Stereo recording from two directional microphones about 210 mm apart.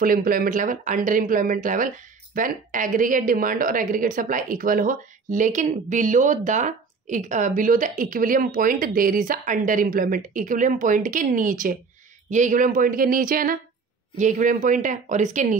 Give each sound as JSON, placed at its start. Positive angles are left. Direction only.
{"t": 0.0, "sound": "speech", "side_deg": -40}